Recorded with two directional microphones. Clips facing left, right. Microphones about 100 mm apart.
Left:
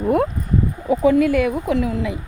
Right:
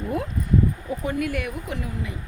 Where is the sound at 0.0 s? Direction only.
55° left (ahead or behind).